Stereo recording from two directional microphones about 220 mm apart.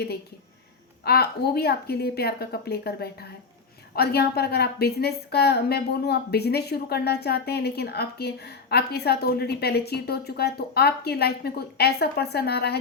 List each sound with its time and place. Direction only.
1.0 s a woman's voice: 45° left (ahead or behind)